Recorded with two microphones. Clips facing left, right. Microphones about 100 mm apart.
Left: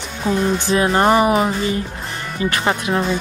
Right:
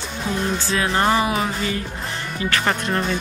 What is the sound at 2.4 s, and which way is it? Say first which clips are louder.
Speech: left 3 dB; 25° left (ahead or behind).